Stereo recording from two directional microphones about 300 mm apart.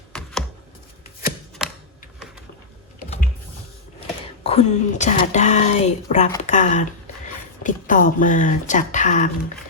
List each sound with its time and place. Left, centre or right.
0.1 s computer keyboard: centre
4.0 s speech: centre